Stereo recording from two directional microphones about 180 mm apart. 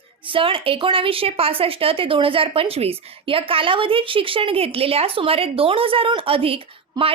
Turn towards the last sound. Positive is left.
turn(degrees=-30)  # may be behind; listen again after turning